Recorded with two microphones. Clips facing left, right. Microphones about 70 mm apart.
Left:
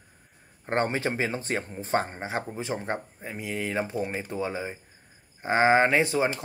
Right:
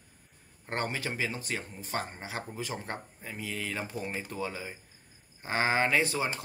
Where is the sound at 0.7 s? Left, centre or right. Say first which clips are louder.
Left 7 dB; left.